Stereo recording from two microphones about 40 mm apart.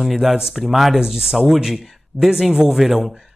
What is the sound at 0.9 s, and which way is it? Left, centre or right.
Speech, centre.